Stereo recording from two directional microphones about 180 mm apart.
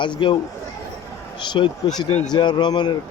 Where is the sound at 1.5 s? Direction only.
25° left (ahead or behind).